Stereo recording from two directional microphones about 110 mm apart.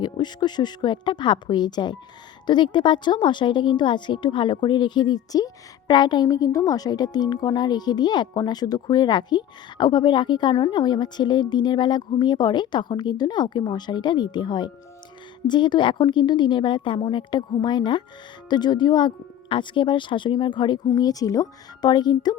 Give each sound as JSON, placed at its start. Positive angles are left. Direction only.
{"t": 0.0, "sound": "a woman's voice", "side_deg": 40}
{"t": 20.8, "sound": "a woman's voice", "side_deg": 35}